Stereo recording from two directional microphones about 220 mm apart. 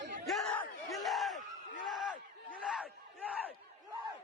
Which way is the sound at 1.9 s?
Centre (ahead or behind).